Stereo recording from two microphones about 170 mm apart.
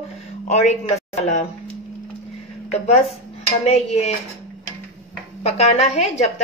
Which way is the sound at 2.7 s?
40° left (ahead or behind).